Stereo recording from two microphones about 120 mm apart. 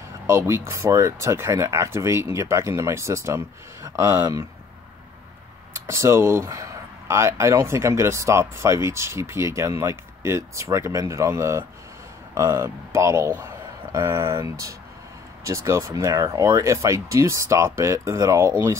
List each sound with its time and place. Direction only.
0.3 s speech: 20° right (ahead or behind)
5.9 s speech: 20° right (ahead or behind)